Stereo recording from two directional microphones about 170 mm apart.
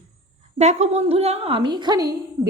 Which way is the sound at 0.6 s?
40° right (ahead or behind).